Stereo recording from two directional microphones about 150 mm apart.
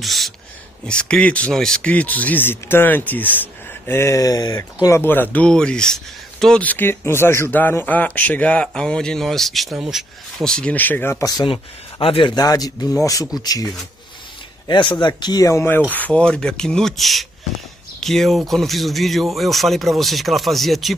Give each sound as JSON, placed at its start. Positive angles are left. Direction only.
{"t": 0.0, "sound": "speech", "side_deg": 0}
{"t": 11.4, "sound": "speech", "side_deg": 35}